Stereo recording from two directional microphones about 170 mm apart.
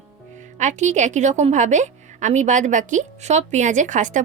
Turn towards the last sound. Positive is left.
turn(degrees=-50)  # may be behind; listen again after turning